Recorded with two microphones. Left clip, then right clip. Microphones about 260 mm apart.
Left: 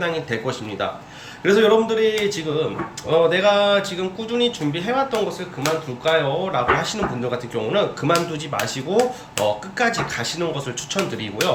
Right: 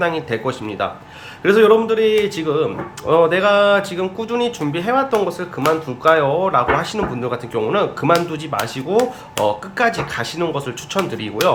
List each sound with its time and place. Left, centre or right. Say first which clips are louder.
0.0 s speech: right 4 dB; centre
9.4 s speech: right 3 dB; right
9.7 s speech: right 3 dB; centre